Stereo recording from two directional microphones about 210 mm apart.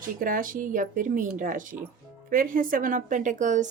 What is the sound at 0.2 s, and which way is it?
A woman's voice, 40° right (ahead or behind).